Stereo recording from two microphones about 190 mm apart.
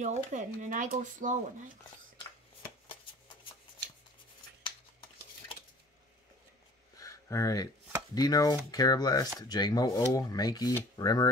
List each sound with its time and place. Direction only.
0.0 s speech: 40° right (ahead or behind)
7.0 s a sound: 15° left (ahead or behind)
8.1 s speech: 20° left (ahead or behind)